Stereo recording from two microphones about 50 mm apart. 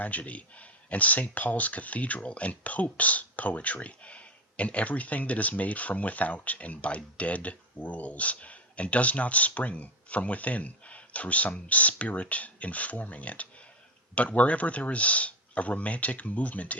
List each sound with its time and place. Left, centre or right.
0.0 s speech: left